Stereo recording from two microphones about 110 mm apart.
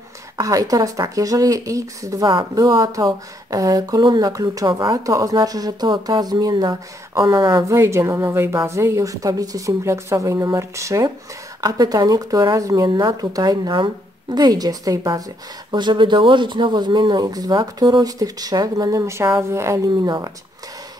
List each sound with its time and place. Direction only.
0.4 s speech: 30° right (ahead or behind)
15.7 s speech: 45° right (ahead or behind); by 19.9 s 25° right (ahead or behind)
20.0 s speech: 40° right (ahead or behind)